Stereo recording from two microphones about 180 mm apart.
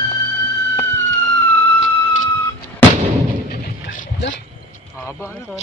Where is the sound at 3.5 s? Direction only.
60° left (ahead or behind).